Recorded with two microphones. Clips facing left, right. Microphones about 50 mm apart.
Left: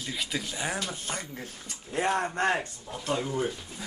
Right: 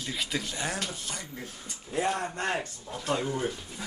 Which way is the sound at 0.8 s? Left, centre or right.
Left.